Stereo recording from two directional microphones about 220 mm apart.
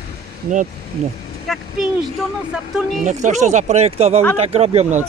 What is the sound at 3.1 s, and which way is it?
Speech, 35° right (ahead or behind).